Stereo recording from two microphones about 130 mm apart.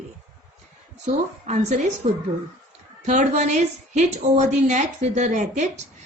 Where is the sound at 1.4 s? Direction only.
60° right (ahead or behind).